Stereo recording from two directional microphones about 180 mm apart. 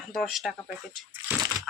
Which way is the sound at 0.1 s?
Centre (ahead or behind).